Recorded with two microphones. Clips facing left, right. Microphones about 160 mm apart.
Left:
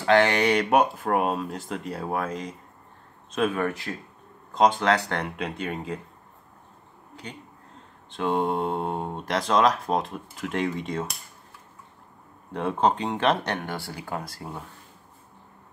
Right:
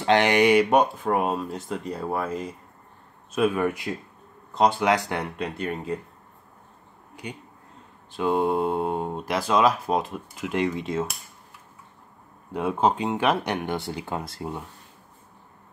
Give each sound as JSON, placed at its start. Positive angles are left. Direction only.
{"t": 0.0, "sound": "speech", "side_deg": -20}
{"t": 0.7, "sound": "speech", "side_deg": 5}
{"t": 5.2, "sound": "speech", "side_deg": 0}
{"t": 7.2, "sound": "speech", "side_deg": -10}
{"t": 12.5, "sound": "speech", "side_deg": -5}